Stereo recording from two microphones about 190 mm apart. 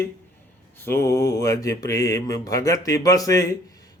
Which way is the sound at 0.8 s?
15° left (ahead or behind).